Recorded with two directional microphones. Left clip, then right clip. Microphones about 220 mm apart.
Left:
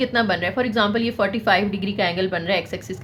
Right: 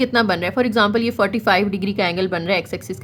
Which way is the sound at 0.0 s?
30° right (ahead or behind).